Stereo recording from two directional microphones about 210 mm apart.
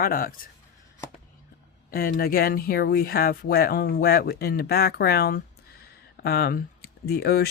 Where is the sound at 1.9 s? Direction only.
45° left (ahead or behind).